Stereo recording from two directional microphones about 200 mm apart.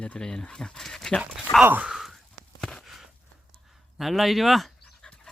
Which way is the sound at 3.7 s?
Centre (ahead or behind).